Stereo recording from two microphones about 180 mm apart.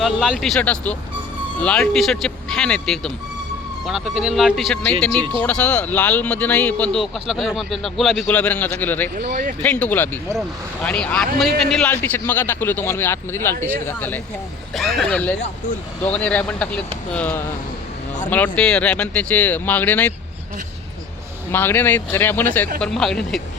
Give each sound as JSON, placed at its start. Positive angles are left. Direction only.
{"t": 0.0, "sound": "speech", "side_deg": 0}
{"t": 9.2, "sound": "speech", "side_deg": -40}
{"t": 9.6, "sound": "speech", "side_deg": 10}
{"t": 21.5, "sound": "speech", "side_deg": 10}